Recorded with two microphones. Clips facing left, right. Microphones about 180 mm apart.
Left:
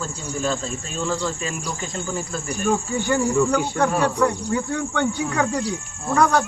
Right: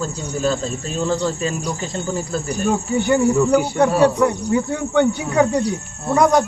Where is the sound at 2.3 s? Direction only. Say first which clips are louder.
Right 5 dB; 35° right (ahead or behind).